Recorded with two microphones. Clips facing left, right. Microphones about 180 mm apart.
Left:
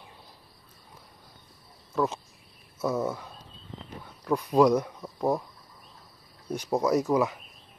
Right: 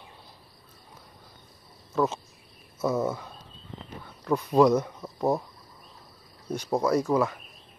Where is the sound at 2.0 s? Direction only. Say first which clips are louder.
Right 2 dB; centre (ahead or behind).